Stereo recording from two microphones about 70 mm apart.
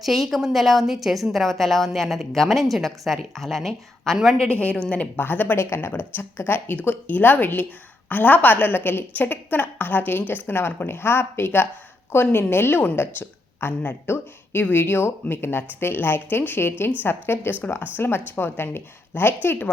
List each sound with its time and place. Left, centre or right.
0.0 s a woman's voice: centre
4.5 s a woman's voice: centre